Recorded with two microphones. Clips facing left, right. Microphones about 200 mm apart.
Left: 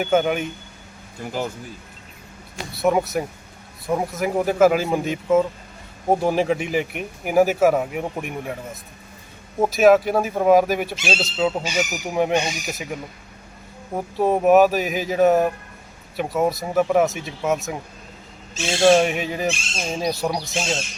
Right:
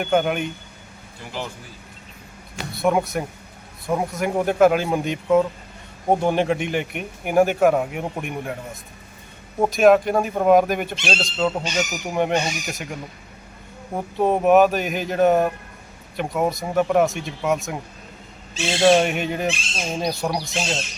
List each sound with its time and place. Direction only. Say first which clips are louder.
0.0 s speech: left 1 dB; centre (ahead or behind)
1.2 s speech: left 5 dB; 45° left (ahead or behind)
2.7 s speech: left 1 dB; centre (ahead or behind)
14.2 s speech: left 1 dB; centre (ahead or behind)